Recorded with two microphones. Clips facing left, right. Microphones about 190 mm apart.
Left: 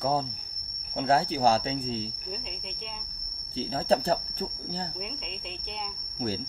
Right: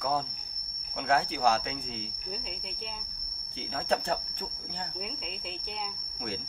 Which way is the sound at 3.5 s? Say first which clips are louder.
Left 5 dB; 35° left (ahead or behind).